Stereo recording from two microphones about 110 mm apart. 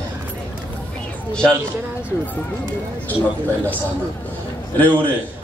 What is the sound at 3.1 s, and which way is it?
Speech, 15° left (ahead or behind).